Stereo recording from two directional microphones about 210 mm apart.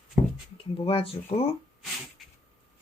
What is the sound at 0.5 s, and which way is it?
Speech, 25° left (ahead or behind).